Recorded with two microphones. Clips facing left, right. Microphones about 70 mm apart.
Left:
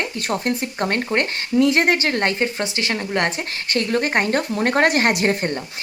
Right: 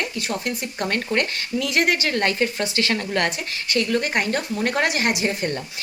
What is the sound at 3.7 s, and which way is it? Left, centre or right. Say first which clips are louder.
Speech: left 2 dB; left.